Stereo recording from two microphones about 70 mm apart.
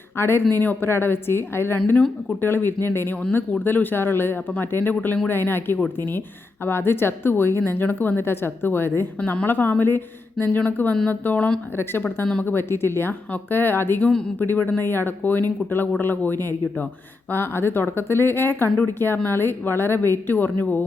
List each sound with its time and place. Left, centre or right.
0.2 s a woman's voice: left
12.2 s speech: centre
12.5 s a woman's voice: left